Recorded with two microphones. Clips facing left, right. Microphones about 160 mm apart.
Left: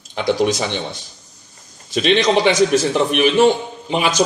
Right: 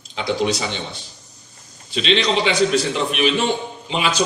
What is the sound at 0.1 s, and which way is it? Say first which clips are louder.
Speech: left 4 dB; 50° left (ahead or behind).